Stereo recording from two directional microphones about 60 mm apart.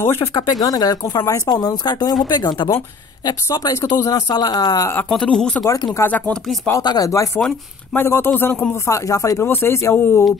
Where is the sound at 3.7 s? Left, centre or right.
Left.